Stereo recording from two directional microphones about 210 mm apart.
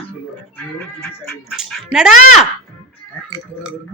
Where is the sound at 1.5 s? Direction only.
5° right (ahead or behind).